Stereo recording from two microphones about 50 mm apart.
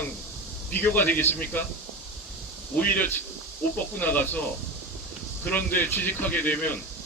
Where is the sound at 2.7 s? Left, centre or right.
Left.